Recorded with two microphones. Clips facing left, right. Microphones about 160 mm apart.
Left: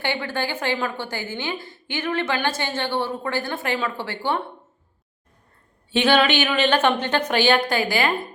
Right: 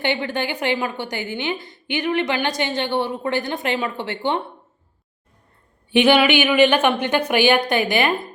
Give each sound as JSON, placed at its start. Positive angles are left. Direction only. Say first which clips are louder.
{"t": 0.0, "sound": "a woman's voice", "louder": "right 3 dB", "side_deg": -20}
{"t": 5.9, "sound": "a woman's voice", "louder": "right 3 dB", "side_deg": -15}